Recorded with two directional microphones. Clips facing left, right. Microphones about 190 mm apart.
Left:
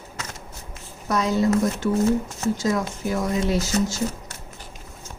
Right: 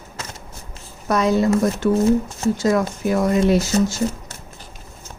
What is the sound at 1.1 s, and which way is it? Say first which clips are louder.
A woman's voice: right 4 dB; 60° right (ahead or behind).